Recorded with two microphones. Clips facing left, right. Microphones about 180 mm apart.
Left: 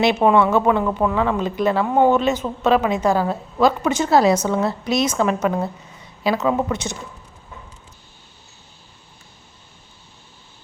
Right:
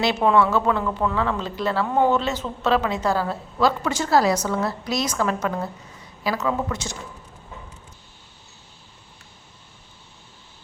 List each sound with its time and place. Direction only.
0.0 s a woman's voice: 20° left (ahead or behind)